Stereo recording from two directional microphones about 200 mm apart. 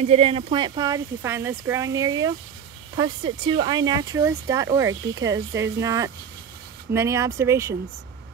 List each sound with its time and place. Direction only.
0.0 s speech: 30° right (ahead or behind)
3.4 s speech: 20° right (ahead or behind)